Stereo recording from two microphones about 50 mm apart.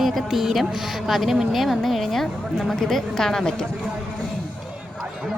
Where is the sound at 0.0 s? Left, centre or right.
Centre.